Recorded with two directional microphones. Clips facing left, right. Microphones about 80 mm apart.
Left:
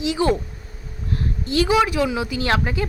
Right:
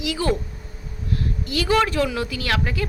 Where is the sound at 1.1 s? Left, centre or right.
Left.